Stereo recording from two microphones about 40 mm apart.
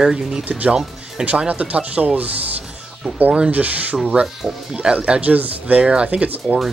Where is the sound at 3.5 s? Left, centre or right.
Right.